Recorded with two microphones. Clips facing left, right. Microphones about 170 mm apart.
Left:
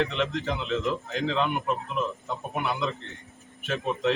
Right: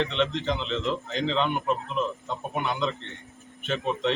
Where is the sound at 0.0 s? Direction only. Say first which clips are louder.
Right 1 dB; 5° left (ahead or behind).